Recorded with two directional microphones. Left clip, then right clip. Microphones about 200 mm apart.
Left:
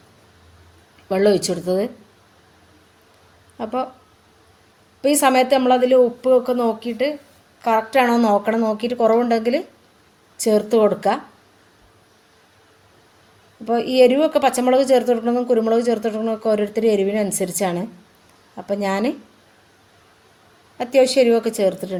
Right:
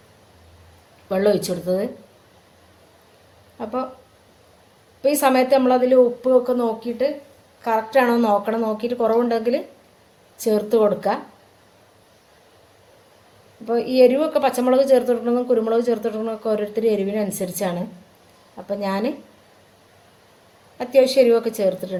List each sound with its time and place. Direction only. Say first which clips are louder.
1.0 s a woman's voice: left 2 dB; 40° left (ahead or behind)
3.6 s a woman's voice: left 2 dB; 40° left (ahead or behind)
5.0 s a woman's voice: left 1 dB; 40° left (ahead or behind)
13.7 s a woman's voice: left 1 dB; 40° left (ahead or behind)
20.7 s a woman's voice: even; 40° left (ahead or behind)